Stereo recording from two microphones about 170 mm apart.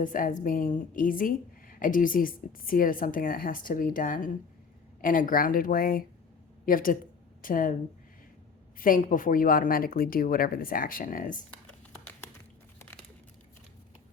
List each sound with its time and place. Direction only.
0.0 s a woman's voice: 50° left (ahead or behind)
8.8 s speech: 55° left (ahead or behind)